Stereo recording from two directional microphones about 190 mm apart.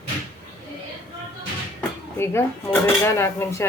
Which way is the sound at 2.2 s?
15° left (ahead or behind).